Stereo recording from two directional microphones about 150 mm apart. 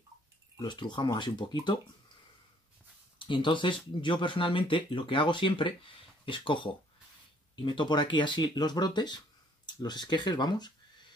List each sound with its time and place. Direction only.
0.6 s speech: 30° left (ahead or behind)
3.2 s speech: 35° left (ahead or behind)